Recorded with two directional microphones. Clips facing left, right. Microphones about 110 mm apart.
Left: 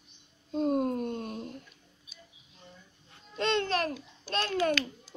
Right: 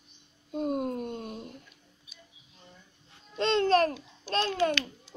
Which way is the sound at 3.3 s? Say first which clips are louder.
Right 5 dB; 30° right (ahead or behind).